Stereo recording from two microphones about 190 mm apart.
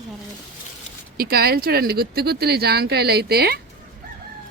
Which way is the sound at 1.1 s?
55° right (ahead or behind).